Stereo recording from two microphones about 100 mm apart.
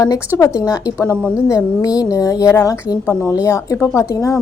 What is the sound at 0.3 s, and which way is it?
A woman's voice, 35° left (ahead or behind).